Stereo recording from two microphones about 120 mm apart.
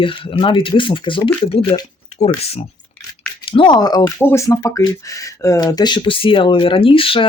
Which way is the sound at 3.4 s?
45° left (ahead or behind).